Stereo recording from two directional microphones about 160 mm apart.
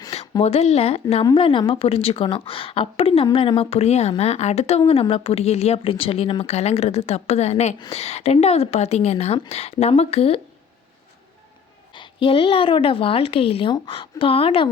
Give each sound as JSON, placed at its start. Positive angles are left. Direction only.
{"t": 0.1, "sound": "speech", "side_deg": 40}
{"t": 11.9, "sound": "speech", "side_deg": 30}